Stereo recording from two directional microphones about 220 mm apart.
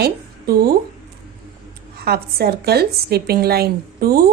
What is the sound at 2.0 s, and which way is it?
A woman's voice, 45° right (ahead or behind).